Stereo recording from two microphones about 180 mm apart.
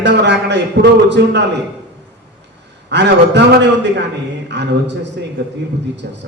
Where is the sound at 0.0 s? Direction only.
70° right (ahead or behind).